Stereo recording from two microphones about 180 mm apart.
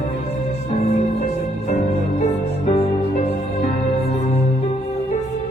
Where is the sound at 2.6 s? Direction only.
35° left (ahead or behind).